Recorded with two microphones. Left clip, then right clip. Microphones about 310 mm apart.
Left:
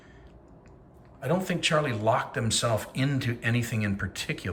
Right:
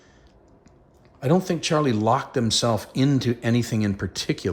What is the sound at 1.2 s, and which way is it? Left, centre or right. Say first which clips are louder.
Speech: right 5 dB; centre.